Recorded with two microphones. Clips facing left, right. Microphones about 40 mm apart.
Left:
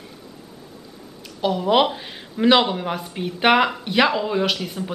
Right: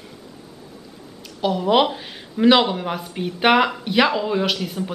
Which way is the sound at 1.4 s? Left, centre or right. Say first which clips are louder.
Even; centre.